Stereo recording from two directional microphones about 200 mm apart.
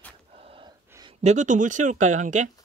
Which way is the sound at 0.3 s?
30° right (ahead or behind).